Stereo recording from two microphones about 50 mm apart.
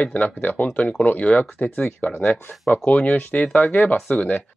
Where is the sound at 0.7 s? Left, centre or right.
Left.